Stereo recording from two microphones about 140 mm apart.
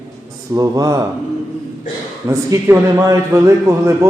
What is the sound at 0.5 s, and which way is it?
Speech, 25° right (ahead or behind).